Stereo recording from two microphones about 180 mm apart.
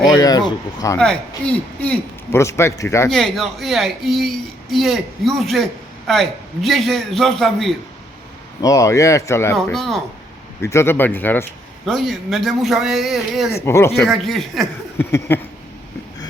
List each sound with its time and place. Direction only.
0.2 s speech: 20° left (ahead or behind)
0.9 s a man's voice: 5° left (ahead or behind)
3.1 s a man's voice: centre (ahead or behind)
8.6 s a man's voice: 20° left (ahead or behind)
9.6 s a man's voice: centre (ahead or behind)
10.6 s a man's voice: 15° left (ahead or behind)
11.9 s a man's voice: centre (ahead or behind)
13.7 s a man's voice: 15° left (ahead or behind)
14.1 s a man's voice: centre (ahead or behind)
14.9 s a man's voice: 10° left (ahead or behind)